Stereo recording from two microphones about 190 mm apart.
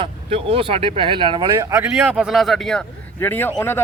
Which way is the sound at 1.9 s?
5° right (ahead or behind).